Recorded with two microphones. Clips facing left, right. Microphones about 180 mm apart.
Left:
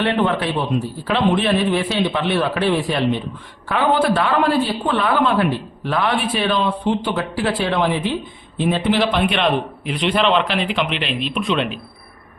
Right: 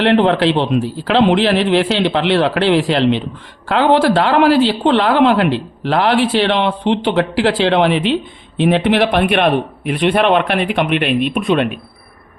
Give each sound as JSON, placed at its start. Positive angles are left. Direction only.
{"t": 0.0, "sound": "speech", "side_deg": -80}
{"t": 3.7, "sound": "speech", "side_deg": -80}